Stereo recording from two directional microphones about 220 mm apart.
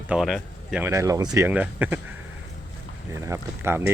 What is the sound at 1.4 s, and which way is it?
Speech, 10° right (ahead or behind).